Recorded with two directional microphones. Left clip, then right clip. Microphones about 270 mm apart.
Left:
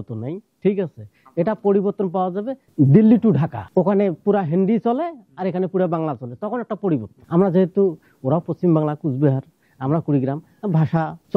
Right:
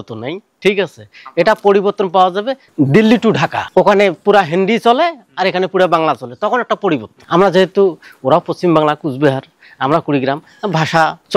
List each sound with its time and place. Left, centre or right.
0.2 s speech: centre
7.8 s speech: right
8.3 s speech: centre